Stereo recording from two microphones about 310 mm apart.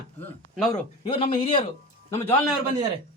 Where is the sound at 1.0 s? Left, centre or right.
Centre.